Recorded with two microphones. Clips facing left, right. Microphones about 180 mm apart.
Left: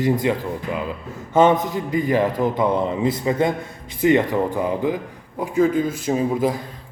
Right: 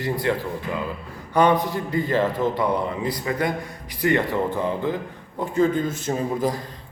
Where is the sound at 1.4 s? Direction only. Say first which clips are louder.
Left 3 dB; 20° left (ahead or behind).